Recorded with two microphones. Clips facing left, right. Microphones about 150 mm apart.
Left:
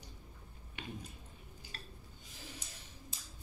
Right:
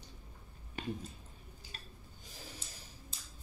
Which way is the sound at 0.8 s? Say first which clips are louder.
Right 7 dB; 40° right (ahead or behind).